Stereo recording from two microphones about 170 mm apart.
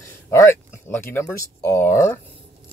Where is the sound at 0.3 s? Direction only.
15° left (ahead or behind).